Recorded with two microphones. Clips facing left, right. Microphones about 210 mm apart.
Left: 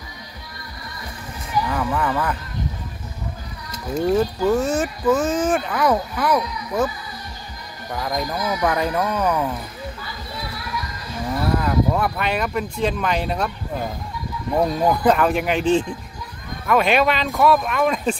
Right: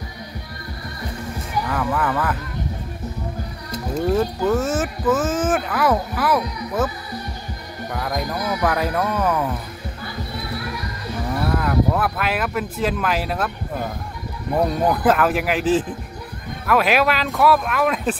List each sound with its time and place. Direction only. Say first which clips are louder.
1.7 s speech: right 2 dB; centre (ahead or behind)
3.9 s speech: left 1 dB; 5° left (ahead or behind)
4.6 s speech: left 1 dB; 5° right (ahead or behind)
7.9 s speech: left 1 dB; 5° right (ahead or behind)
10.0 s music: right 3 dB; 55° right (ahead or behind)
11.5 s speech: even; centre (ahead or behind)
14.6 s speech: even; 5° right (ahead or behind)